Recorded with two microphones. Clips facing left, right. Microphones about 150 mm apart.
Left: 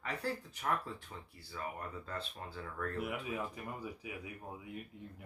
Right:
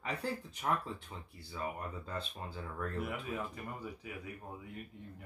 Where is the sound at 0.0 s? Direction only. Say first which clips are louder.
Right 1 dB; 20° right (ahead or behind).